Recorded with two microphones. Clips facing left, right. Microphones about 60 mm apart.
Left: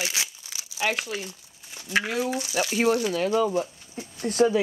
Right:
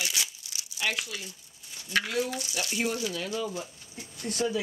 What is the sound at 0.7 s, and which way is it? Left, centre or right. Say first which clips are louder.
Speech: left 5 dB; left.